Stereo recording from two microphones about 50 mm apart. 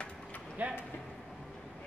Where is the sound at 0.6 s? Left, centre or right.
Right.